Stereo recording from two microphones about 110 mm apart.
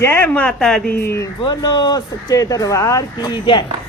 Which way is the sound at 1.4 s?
40° left (ahead or behind).